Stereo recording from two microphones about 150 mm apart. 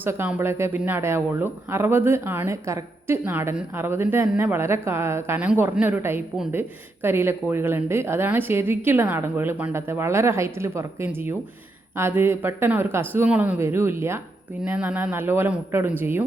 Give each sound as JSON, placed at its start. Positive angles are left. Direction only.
{"t": 0.0, "sound": "speech", "side_deg": -15}